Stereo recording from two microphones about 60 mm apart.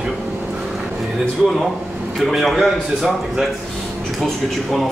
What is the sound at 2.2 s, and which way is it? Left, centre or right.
A man's voice, centre.